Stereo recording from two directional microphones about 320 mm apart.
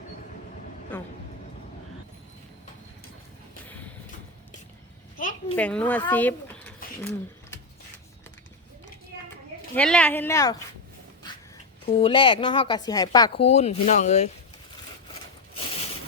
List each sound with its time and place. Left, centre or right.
0.9 s vehicle: centre
3.7 s a sound: centre
5.1 s a sound: left
5.5 s speech: centre
9.7 s speech: centre
11.9 s speech: centre